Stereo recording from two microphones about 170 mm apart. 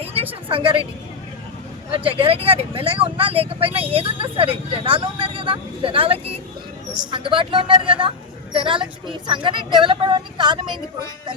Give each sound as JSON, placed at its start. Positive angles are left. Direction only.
{"t": 0.0, "sound": "a sound", "side_deg": -35}
{"t": 0.4, "sound": "a woman's voice", "side_deg": -30}
{"t": 1.9, "sound": "a woman's voice", "side_deg": -35}